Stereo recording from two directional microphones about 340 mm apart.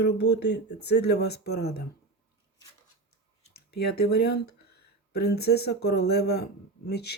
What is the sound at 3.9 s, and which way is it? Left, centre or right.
Speech, left.